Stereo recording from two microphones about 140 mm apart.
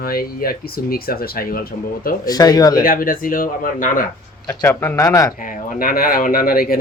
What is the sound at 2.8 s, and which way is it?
Speech, 90° left.